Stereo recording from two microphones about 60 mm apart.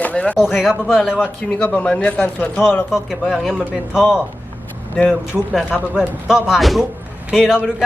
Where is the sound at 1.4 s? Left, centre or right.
Centre.